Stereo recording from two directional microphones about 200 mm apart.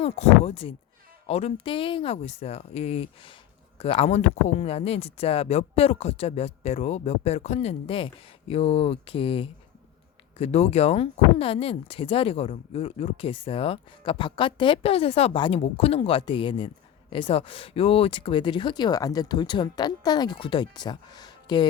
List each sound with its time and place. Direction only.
0.0 s speech: 30° left (ahead or behind)